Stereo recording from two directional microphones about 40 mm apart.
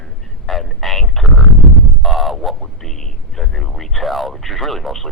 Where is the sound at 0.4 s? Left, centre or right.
Centre.